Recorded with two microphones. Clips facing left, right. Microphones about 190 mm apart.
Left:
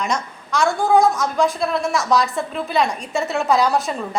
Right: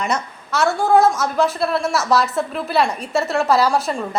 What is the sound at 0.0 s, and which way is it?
A woman's voice, 5° right (ahead or behind).